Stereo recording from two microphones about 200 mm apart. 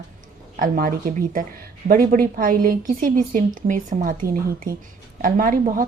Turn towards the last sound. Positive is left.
turn(degrees=-45)  # may be behind; listen again after turning